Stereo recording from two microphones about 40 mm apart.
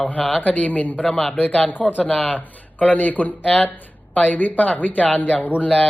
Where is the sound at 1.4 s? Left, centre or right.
Left.